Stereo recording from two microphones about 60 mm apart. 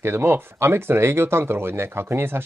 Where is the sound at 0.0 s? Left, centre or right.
Right.